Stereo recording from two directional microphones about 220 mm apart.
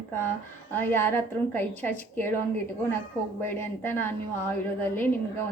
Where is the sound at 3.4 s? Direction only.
10° left (ahead or behind).